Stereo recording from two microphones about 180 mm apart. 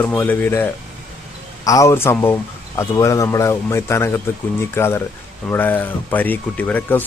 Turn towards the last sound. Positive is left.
turn(degrees=10)  # may be behind; listen again after turning